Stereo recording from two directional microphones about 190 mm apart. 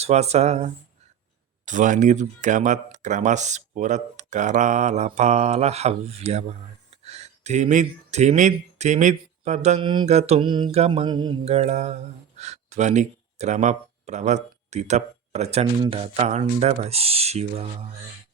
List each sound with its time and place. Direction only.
0.0 s speech: 35° right (ahead or behind)
9.8 s a sound: 25° right (ahead or behind)
10.1 s speech: 35° right (ahead or behind)
11.4 s speech: 35° right (ahead or behind)